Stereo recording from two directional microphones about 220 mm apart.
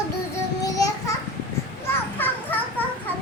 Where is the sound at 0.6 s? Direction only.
15° left (ahead or behind).